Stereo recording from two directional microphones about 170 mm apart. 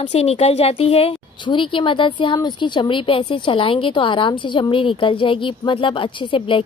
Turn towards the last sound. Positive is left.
turn(degrees=30)  # may be behind; listen again after turning